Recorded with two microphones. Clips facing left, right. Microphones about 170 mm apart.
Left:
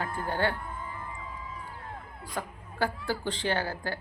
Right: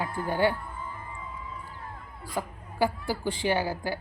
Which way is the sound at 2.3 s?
10° right (ahead or behind).